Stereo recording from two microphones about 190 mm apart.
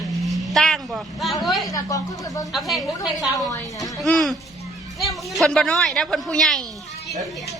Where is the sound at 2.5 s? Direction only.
Centre (ahead or behind).